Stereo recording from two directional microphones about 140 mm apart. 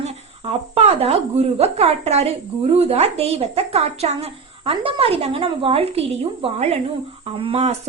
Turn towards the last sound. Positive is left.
turn(degrees=-40)  # may be behind; listen again after turning